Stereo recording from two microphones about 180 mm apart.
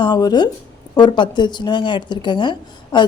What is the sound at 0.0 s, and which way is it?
Speech, 25° left (ahead or behind).